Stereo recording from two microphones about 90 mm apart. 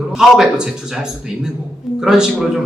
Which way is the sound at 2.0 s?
5° right (ahead or behind).